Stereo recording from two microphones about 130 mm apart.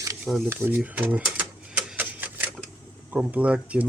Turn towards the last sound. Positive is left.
turn(degrees=-10)  # may be behind; listen again after turning